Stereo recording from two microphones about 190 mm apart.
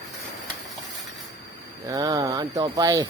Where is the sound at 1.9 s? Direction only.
20° right (ahead or behind).